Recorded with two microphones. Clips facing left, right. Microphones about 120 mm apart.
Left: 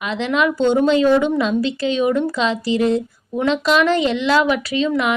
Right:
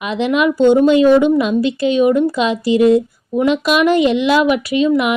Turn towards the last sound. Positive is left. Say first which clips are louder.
# right 5 dB
turn(degrees=-15)  # may be behind; listen again after turning